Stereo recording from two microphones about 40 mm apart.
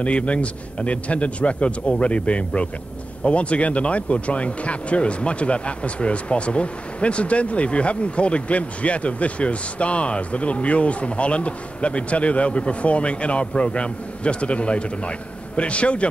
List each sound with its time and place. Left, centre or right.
0.0 s a man's voice: left